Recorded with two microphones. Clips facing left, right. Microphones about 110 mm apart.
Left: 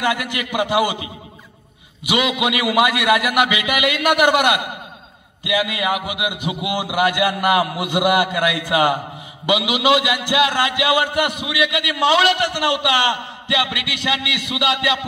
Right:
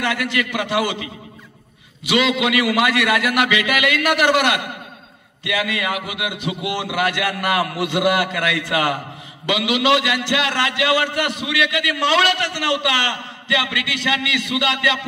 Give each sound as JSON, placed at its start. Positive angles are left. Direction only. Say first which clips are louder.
{"t": 0.0, "sound": "a man's voice", "louder": "even", "side_deg": 15}